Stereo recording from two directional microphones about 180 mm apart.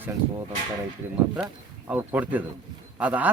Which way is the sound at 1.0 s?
10° right (ahead or behind).